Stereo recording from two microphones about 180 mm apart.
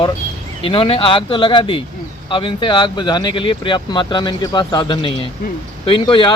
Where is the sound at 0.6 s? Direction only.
30° left (ahead or behind).